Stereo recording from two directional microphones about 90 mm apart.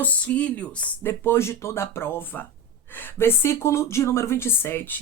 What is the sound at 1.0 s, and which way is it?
A man's voice, 25° left (ahead or behind).